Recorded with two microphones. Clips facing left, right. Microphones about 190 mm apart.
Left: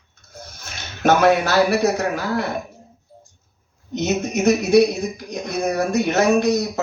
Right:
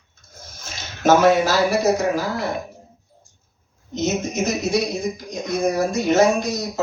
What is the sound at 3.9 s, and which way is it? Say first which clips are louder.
Speech: left 1 dB; 65° left (ahead or behind).